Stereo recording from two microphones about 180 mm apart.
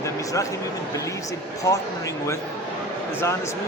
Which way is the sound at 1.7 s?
15° left (ahead or behind).